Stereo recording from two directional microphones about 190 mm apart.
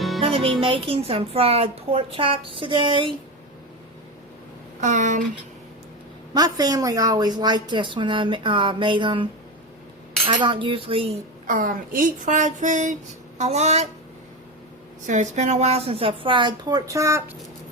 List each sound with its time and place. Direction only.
0.2 s music: 30° right (ahead or behind)
0.6 s a woman's voice: 30° right (ahead or behind)
4.8 s speech: 40° right (ahead or behind)
6.3 s a woman's voice: 20° right (ahead or behind)
10.2 s a woman's voice: 25° right (ahead or behind)
11.4 s speech: 45° right (ahead or behind)
15.0 s a woman's voice: 40° right (ahead or behind); by 17.2 s 15° right (ahead or behind)